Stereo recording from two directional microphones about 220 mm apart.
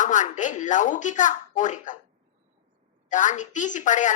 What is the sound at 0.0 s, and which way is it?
Speech, 35° left (ahead or behind).